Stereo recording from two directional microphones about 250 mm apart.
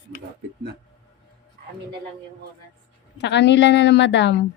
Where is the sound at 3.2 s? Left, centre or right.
Left.